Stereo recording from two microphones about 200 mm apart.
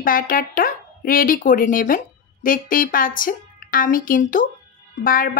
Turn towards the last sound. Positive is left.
turn(degrees=45)  # may be behind; listen again after turning